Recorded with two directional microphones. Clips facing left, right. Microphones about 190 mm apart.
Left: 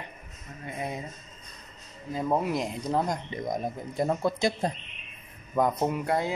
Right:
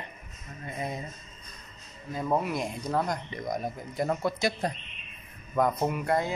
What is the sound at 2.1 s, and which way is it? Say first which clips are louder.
A man's voice: left 1 dB; 15° left (ahead or behind).